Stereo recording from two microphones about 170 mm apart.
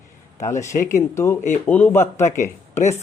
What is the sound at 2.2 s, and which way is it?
Speech, 45° left (ahead or behind).